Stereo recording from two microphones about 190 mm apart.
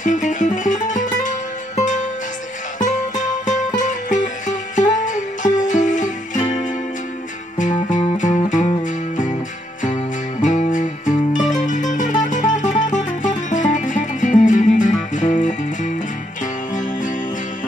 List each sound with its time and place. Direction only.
0.0 s music: 40° left (ahead or behind)